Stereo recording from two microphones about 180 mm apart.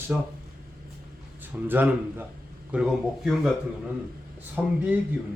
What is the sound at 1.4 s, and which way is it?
A man's voice, 10° right (ahead or behind).